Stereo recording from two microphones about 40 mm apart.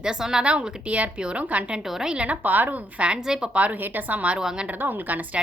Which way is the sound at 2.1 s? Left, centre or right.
Right.